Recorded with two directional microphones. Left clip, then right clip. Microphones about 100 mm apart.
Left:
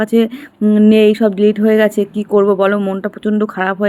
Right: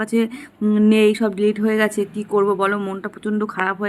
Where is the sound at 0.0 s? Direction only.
35° left (ahead or behind).